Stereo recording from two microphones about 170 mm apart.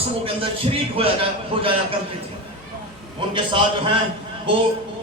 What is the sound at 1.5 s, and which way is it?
Speech, 30° right (ahead or behind).